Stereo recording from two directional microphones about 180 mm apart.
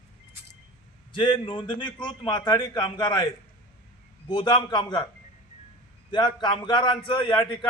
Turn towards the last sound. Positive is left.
turn(degrees=30)  # may be behind; listen again after turning